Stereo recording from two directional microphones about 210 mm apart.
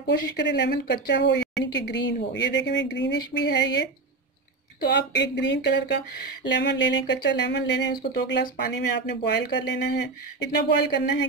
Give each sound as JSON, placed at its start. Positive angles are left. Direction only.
{"t": 0.0, "sound": "a woman's voice", "side_deg": 55}